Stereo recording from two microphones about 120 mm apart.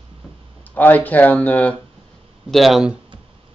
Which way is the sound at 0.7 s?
15° left (ahead or behind).